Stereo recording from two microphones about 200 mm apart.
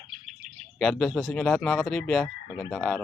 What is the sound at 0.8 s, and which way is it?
Frog, centre (ahead or behind).